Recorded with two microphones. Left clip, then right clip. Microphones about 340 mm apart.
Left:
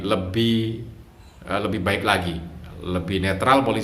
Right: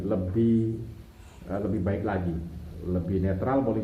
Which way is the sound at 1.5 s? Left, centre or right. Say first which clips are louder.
Left 7 dB; left.